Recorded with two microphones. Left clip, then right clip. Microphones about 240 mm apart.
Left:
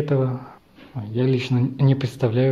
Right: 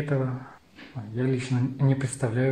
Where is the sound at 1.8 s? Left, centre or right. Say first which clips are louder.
Left 6 dB; left.